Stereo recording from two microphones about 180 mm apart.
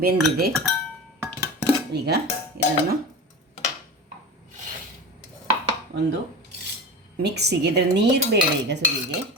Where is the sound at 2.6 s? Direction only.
60° right (ahead or behind).